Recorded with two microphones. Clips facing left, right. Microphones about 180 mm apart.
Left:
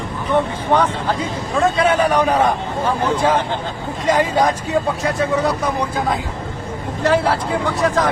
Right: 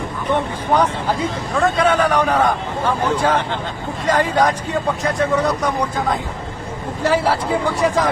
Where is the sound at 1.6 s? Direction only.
10° left (ahead or behind).